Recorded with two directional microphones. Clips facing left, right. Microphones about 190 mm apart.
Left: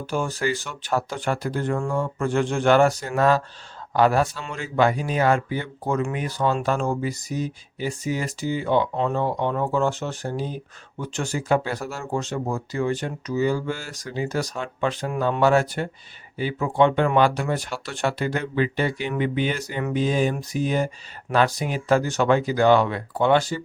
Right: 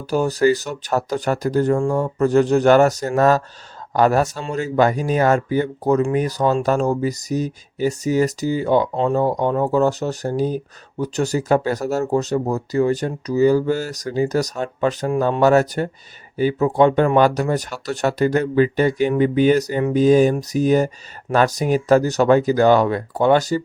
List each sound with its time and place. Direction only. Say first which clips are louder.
0.0 s speech: right 8 dB; 40° right (ahead or behind)